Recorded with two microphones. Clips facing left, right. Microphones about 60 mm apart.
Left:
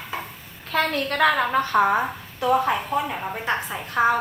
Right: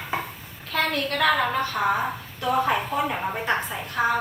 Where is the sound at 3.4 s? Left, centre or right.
Centre.